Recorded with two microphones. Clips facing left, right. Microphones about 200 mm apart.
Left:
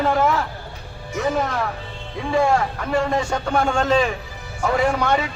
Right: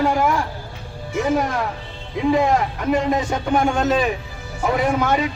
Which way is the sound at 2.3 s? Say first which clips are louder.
Left 1 dB; 20° right (ahead or behind).